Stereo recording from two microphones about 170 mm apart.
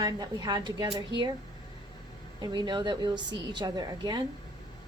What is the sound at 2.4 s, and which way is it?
A woman's voice, 25° right (ahead or behind).